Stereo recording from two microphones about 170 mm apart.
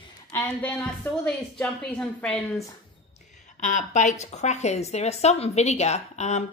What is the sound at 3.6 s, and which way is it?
Speech, 45° left (ahead or behind).